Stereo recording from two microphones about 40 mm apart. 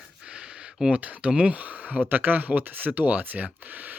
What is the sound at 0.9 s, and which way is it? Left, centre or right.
Speech, right.